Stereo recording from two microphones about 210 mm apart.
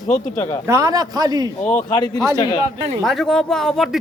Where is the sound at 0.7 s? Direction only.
15° right (ahead or behind).